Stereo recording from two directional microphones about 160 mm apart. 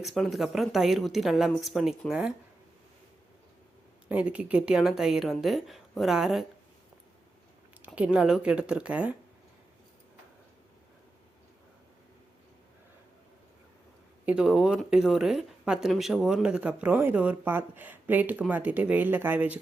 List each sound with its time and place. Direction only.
0.0 s a woman's voice: centre (ahead or behind)
4.1 s a woman's voice: 10° right (ahead or behind)
7.9 s speech: 5° right (ahead or behind)
14.3 s speech: 5° right (ahead or behind)